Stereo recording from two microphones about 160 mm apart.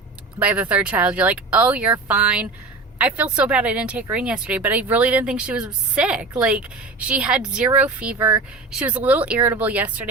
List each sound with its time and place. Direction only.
0.3 s speech: 10° right (ahead or behind)